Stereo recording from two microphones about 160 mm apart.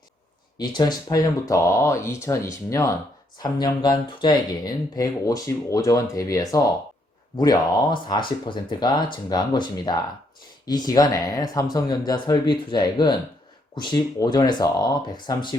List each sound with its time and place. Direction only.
0.6 s speech: 25° left (ahead or behind)